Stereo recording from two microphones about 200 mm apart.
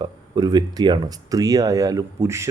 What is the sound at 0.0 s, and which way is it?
Speech, 20° right (ahead or behind).